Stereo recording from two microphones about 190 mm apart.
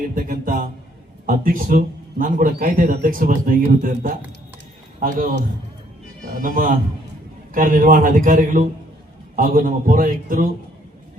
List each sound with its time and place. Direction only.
0.2 s a sound: 50° right (ahead or behind)
1.3 s a man's voice: 50° right (ahead or behind)
6.4 s a man's voice: 45° right (ahead or behind)